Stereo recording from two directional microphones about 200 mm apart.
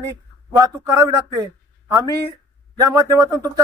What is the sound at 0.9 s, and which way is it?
Speech, 15° right (ahead or behind).